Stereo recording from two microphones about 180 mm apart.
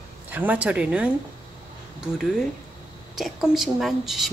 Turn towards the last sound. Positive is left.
turn(degrees=0)  # may be behind; listen again after turning